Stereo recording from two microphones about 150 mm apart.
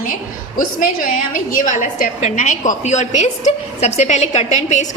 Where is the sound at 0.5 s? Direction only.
70° left (ahead or behind).